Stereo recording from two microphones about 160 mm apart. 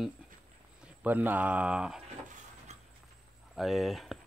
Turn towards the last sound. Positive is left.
turn(degrees=0)  # may be behind; listen again after turning